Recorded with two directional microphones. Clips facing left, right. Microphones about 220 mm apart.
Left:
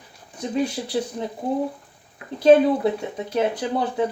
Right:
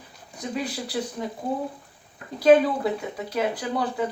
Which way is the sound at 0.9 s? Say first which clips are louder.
Left 4 dB; 25° left (ahead or behind).